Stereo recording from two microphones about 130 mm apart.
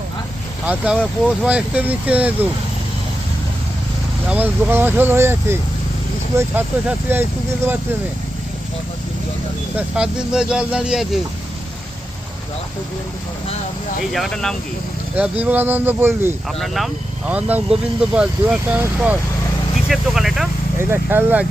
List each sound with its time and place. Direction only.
0.6 s speech: 10° right (ahead or behind)
4.3 s speech: 15° right (ahead or behind)
9.7 s speech: 5° right (ahead or behind)
14.1 s speech: centre (ahead or behind)
15.1 s speech: 10° right (ahead or behind)
16.5 s speech: centre (ahead or behind)
17.2 s speech: 10° right (ahead or behind)
20.7 s speech: 15° right (ahead or behind)